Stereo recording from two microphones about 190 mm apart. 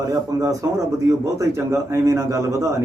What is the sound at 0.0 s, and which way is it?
Speech, 20° right (ahead or behind).